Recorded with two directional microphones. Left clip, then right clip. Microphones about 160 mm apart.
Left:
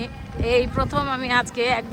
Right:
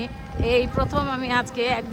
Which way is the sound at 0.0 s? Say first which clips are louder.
Even; 15° right (ahead or behind).